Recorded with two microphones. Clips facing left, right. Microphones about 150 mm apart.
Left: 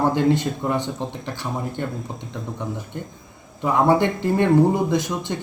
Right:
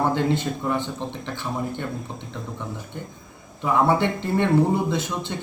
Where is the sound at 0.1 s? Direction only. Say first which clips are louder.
Left 3 dB; 15° left (ahead or behind).